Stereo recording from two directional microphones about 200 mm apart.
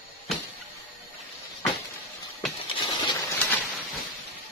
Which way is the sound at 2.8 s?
25° left (ahead or behind).